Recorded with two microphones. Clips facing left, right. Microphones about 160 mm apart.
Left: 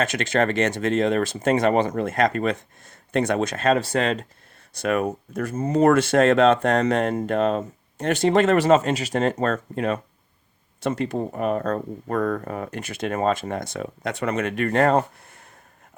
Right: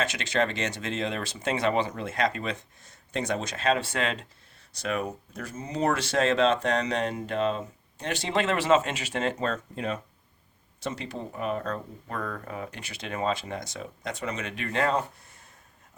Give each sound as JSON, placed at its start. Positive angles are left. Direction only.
{"t": 0.0, "sound": "speech", "side_deg": 50}
{"t": 4.7, "sound": "speech", "side_deg": 55}